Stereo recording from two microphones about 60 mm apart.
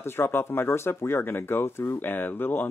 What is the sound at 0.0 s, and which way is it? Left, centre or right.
Speech, left.